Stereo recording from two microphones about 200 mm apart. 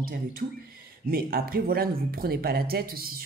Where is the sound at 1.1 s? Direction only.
45° right (ahead or behind).